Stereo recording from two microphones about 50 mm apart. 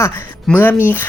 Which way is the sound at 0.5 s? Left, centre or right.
Left.